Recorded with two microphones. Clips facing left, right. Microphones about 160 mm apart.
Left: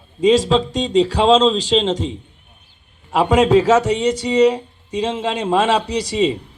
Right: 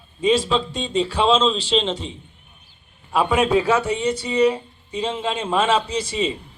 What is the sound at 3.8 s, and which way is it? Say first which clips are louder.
Speech: left 4 dB; 90° left.